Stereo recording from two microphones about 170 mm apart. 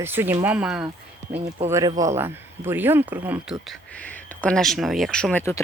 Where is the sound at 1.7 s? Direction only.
20° right (ahead or behind).